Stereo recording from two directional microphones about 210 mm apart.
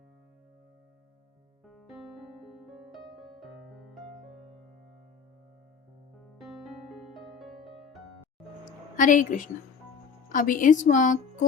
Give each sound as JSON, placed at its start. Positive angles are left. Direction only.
{"t": 2.6, "sound": "music", "side_deg": 0}
{"t": 7.1, "sound": "music", "side_deg": 0}
{"t": 9.0, "sound": "a woman's voice", "side_deg": 40}